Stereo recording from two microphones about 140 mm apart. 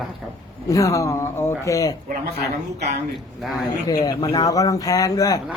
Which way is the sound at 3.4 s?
Centre (ahead or behind).